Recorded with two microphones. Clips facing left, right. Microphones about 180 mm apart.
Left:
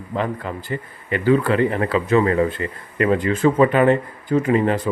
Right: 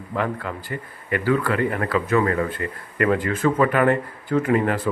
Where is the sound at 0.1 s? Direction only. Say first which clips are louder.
Left 1 dB; 20° left (ahead or behind).